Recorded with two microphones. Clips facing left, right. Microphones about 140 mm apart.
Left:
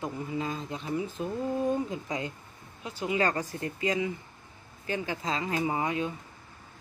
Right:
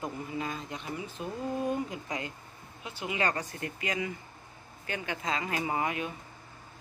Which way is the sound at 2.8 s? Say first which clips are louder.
Left 3 dB; 40° left (ahead or behind).